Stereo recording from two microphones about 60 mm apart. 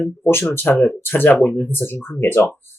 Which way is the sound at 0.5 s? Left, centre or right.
Left.